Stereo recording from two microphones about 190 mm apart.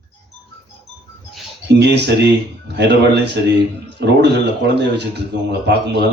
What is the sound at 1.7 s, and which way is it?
A man's voice, 65° right (ahead or behind).